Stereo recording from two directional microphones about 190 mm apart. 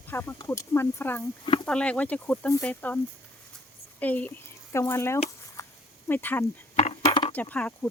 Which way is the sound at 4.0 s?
10° left (ahead or behind).